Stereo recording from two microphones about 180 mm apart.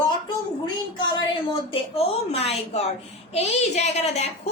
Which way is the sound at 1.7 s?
30° left (ahead or behind).